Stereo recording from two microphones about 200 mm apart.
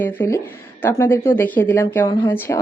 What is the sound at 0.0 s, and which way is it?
Speech, 10° left (ahead or behind).